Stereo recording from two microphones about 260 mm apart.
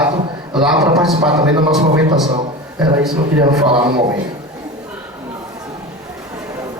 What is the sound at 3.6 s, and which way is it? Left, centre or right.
Speech, centre.